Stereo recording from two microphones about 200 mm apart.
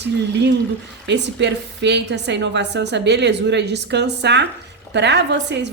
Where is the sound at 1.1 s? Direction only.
60° right (ahead or behind).